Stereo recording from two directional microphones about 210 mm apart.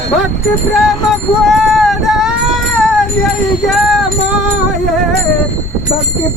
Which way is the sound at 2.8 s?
Centre (ahead or behind).